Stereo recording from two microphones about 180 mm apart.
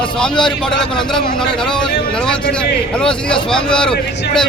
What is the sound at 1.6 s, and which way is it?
A man's voice, 5° left (ahead or behind).